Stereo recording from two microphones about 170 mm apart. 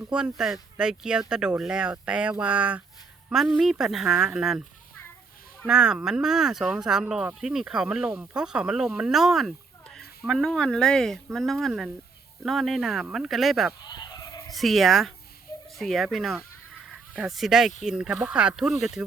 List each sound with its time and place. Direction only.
0.0 s speech: 5° right (ahead or behind)
5.6 s speech: 5° right (ahead or behind)
13.8 s a sound: 25° left (ahead or behind)
14.5 s speech: centre (ahead or behind)